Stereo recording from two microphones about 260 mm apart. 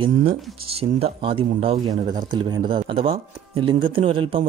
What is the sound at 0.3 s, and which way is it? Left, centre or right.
Speech, right.